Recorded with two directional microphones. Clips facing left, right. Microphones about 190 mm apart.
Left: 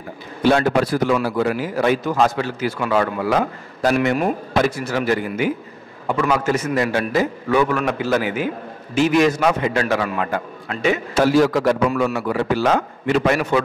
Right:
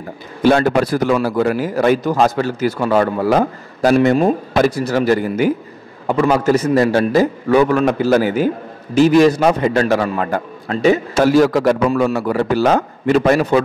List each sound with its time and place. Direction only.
0.4 s a man's voice: 45° right (ahead or behind)